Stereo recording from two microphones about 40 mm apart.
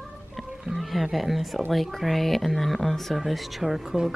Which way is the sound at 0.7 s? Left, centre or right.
Centre.